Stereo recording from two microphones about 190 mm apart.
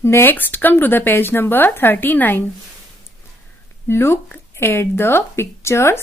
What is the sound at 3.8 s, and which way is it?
Speech, 10° left (ahead or behind).